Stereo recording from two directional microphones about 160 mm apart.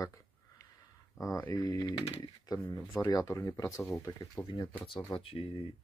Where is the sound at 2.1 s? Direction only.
15° left (ahead or behind).